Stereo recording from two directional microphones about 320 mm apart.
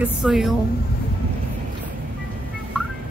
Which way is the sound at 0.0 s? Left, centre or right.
Centre.